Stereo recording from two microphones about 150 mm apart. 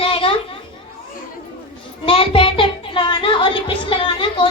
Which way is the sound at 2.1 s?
35° left (ahead or behind).